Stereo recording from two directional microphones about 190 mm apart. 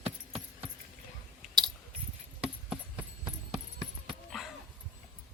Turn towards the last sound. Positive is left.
turn(degrees=0)  # may be behind; listen again after turning